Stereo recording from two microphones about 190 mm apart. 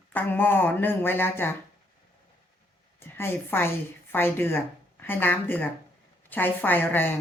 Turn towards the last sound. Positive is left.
turn(degrees=10)  # may be behind; listen again after turning